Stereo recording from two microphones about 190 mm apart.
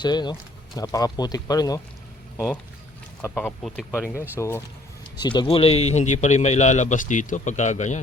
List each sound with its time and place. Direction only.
0.0 s speech: 20° left (ahead or behind)
3.2 s speech: 10° left (ahead or behind)
3.7 s speech: 5° right (ahead or behind)
4.4 s speech: 15° left (ahead or behind)
5.2 s a man's voice: 25° left (ahead or behind)